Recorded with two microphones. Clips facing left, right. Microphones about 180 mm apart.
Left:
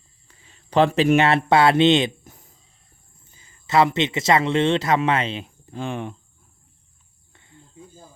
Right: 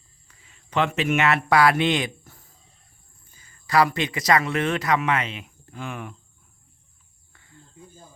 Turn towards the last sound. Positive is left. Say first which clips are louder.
# left 2 dB
turn(degrees=20)  # may be behind; listen again after turning